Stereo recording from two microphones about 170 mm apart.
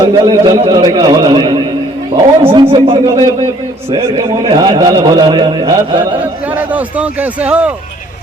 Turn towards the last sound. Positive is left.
turn(degrees=-10)  # may be behind; listen again after turning